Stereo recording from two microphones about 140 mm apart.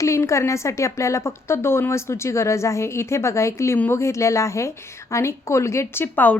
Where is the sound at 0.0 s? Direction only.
20° left (ahead or behind).